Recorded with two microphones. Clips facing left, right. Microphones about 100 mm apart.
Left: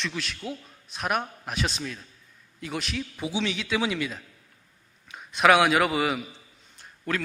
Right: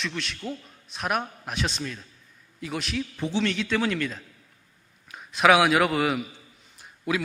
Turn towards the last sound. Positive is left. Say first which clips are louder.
# right 2 dB
turn(degrees=-10)  # may be behind; listen again after turning